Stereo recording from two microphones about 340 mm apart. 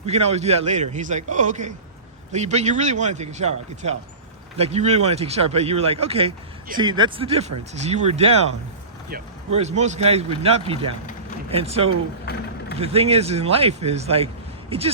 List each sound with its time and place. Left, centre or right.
0.0 s a man's voice: centre
12.2 s vehicle: left
12.8 s speech: centre